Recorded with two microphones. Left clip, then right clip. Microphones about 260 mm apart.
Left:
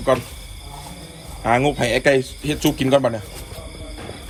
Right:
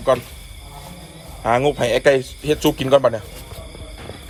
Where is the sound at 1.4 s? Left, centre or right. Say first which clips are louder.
Right 1 dB; centre.